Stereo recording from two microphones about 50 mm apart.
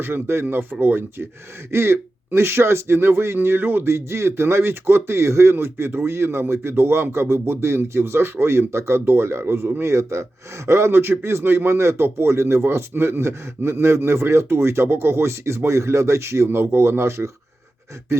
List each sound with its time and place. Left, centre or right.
0.0 s speech: right
0.5 s speech: right
1.7 s speech: right
3.9 s speech: right
9.8 s a man's voice: right